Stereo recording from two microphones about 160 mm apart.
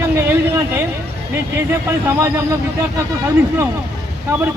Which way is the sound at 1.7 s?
15° right (ahead or behind).